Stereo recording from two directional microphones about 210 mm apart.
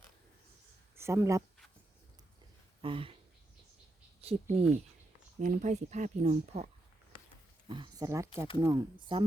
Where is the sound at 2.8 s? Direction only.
25° right (ahead or behind).